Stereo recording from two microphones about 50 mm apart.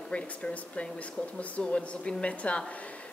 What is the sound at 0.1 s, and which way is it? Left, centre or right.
A woman's voice, left.